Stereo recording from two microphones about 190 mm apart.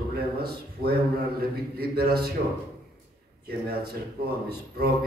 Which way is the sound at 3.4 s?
55° right (ahead or behind).